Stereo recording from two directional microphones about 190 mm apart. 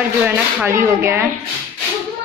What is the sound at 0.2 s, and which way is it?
A woman's voice, 10° right (ahead or behind).